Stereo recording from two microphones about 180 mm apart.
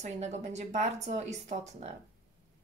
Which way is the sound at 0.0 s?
40° right (ahead or behind).